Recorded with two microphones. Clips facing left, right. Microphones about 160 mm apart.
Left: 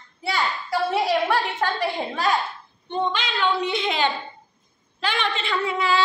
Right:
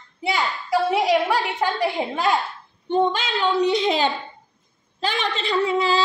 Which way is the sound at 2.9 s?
45° right (ahead or behind).